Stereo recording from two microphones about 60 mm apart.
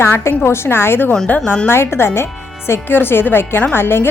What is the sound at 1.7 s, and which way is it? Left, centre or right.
Speech, left.